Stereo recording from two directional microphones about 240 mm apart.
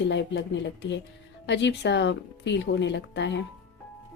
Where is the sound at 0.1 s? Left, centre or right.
Left.